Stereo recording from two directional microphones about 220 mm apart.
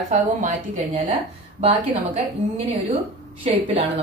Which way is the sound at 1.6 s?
25° right (ahead or behind).